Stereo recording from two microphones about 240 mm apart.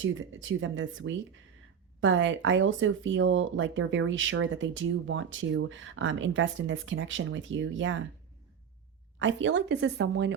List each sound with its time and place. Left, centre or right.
0.0 s speech: right
9.1 s speech: right